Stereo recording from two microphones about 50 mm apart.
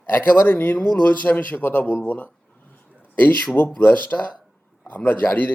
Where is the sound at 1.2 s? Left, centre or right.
Left.